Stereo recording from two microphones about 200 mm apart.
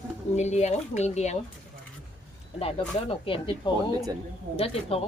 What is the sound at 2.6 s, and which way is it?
A woman's voice, 30° left (ahead or behind).